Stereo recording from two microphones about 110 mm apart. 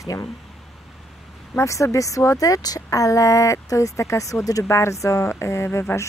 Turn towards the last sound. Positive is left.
turn(degrees=25)  # may be behind; listen again after turning